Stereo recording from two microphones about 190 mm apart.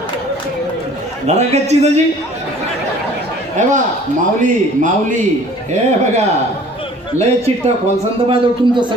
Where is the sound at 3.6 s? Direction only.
40° right (ahead or behind).